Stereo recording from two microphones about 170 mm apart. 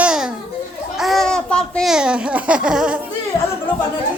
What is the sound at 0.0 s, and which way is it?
Children playing, 5° right (ahead or behind).